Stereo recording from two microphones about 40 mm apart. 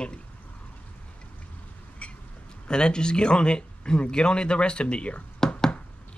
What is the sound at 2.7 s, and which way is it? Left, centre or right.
Speech, left.